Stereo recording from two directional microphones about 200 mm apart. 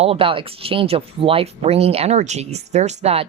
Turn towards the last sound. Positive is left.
turn(degrees=-30)  # may be behind; listen again after turning